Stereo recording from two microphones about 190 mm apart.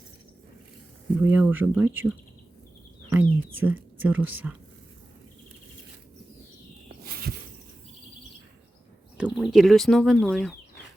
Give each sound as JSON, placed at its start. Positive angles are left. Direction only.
{"t": 1.2, "sound": "speech", "side_deg": -10}
{"t": 3.1, "sound": "whispering", "side_deg": -10}
{"t": 7.0, "sound": "a sound", "side_deg": -50}
{"t": 9.1, "sound": "speech", "side_deg": -5}